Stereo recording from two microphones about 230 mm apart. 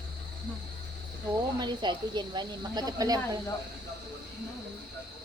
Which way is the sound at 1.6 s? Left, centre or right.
Centre.